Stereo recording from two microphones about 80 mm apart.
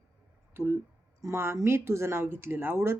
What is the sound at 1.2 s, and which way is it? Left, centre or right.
A woman's voice, right.